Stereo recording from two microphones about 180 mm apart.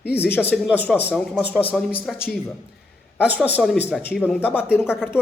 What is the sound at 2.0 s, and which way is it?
A man's voice, 5° right (ahead or behind).